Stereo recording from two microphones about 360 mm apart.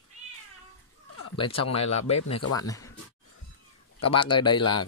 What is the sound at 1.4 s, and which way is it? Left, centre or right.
Speech, centre.